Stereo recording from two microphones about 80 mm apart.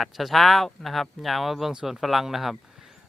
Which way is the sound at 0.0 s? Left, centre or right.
Centre.